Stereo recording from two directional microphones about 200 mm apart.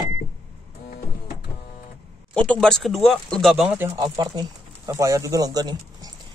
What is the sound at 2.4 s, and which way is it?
Speech, 5° left (ahead or behind).